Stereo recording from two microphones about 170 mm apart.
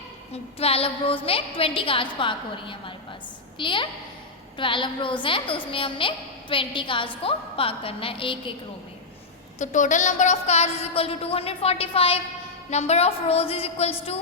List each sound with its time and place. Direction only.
0.6 s a woman's voice: 35° left (ahead or behind)
9.6 s a woman's voice: 50° left (ahead or behind)